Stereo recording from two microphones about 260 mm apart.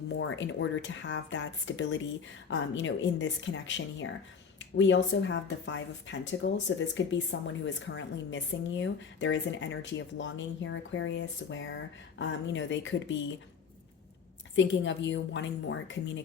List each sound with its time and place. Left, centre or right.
0.2 s a woman's voice: left
14.5 s a woman's voice: left